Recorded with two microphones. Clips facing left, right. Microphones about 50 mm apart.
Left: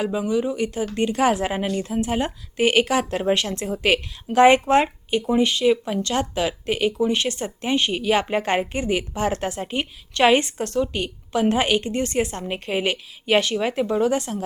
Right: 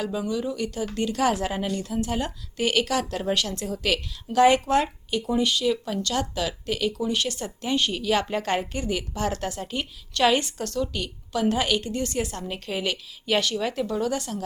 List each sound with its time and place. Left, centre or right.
0.0 s speech: left